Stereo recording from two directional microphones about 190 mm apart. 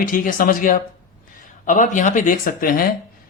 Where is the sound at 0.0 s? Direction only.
45° left (ahead or behind).